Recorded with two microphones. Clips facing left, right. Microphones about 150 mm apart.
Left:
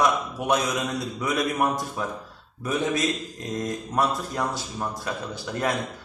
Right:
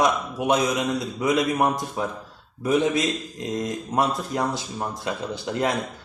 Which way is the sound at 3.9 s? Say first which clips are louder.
Right 2 dB; 20° right (ahead or behind).